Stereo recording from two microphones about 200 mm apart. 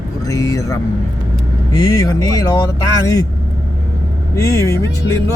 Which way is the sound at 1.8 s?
15° left (ahead or behind).